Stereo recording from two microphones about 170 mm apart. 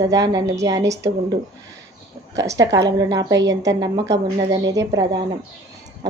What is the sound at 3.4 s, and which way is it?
Speech, 90° right.